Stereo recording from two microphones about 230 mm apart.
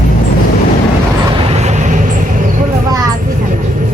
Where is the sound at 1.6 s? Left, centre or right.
Right.